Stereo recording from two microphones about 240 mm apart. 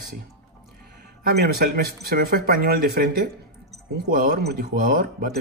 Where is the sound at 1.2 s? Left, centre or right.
Right.